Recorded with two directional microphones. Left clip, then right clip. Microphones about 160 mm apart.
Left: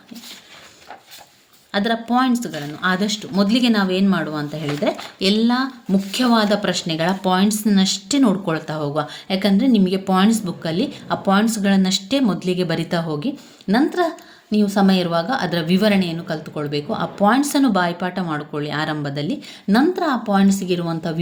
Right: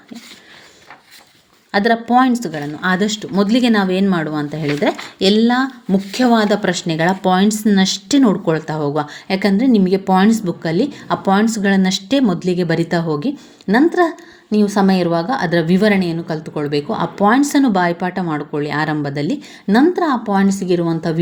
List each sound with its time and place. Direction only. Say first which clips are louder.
1.7 s a woman's voice: right 6 dB; 30° right (ahead or behind)